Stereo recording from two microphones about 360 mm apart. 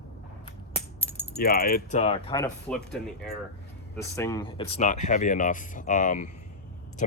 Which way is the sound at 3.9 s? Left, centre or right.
Centre.